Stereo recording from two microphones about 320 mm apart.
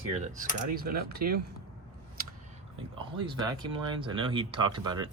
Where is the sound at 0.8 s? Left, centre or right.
Right.